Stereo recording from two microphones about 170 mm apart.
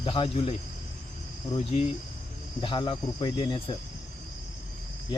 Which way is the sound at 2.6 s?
30° left (ahead or behind).